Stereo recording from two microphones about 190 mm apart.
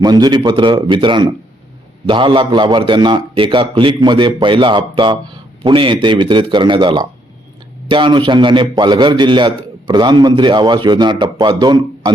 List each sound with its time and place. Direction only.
0.0 s a man's voice: 20° right (ahead or behind)